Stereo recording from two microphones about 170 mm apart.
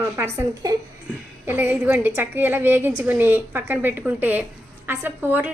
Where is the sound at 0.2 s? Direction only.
20° right (ahead or behind).